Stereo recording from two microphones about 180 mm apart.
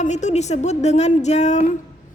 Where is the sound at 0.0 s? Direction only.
40° left (ahead or behind).